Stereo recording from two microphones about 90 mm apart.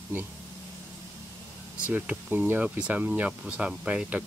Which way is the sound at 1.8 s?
20° right (ahead or behind).